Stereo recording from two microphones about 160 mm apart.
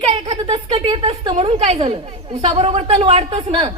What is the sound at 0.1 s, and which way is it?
A woman's voice, 35° right (ahead or behind).